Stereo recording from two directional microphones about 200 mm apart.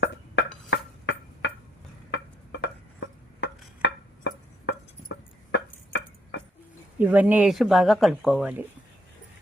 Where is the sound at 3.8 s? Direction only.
60° left (ahead or behind).